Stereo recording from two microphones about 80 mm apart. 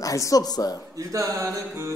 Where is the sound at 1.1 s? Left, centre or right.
Right.